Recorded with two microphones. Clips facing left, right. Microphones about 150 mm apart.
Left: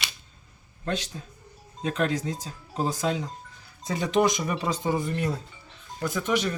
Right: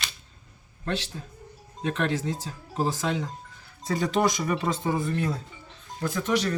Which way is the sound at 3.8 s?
20° left (ahead or behind).